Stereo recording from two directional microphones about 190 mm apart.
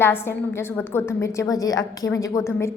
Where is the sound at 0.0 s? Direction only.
10° left (ahead or behind).